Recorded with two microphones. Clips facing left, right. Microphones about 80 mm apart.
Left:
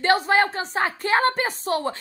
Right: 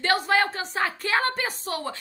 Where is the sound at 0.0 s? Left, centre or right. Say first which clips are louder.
Left 3 dB; left.